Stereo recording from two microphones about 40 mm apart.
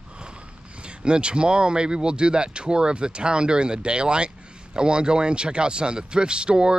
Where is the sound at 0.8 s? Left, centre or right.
Right.